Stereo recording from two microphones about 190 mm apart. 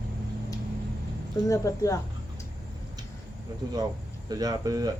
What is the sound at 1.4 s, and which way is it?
Speech, 15° left (ahead or behind).